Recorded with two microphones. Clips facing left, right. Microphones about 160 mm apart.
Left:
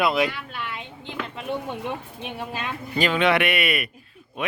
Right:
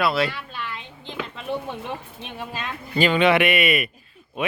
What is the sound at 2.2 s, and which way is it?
Speech, 10° left (ahead or behind).